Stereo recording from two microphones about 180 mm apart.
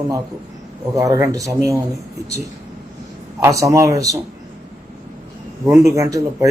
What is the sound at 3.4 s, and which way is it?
Speech, 15° right (ahead or behind).